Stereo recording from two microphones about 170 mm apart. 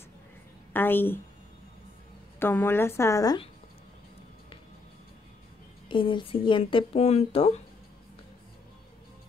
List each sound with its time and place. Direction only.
0.7 s a woman's voice: 10° left (ahead or behind)
2.3 s a woman's voice: 15° left (ahead or behind)
5.9 s speech: 30° left (ahead or behind)